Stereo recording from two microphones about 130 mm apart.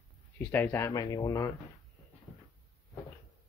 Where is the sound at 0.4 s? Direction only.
15° left (ahead or behind).